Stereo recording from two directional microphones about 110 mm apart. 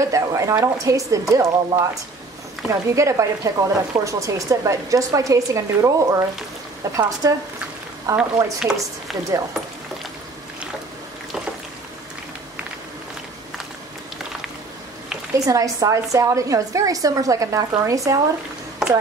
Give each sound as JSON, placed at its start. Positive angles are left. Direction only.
{"t": 0.1, "sound": "a woman's voice", "side_deg": -30}
{"t": 8.2, "sound": "speech", "side_deg": -5}
{"t": 15.3, "sound": "a woman's voice", "side_deg": -30}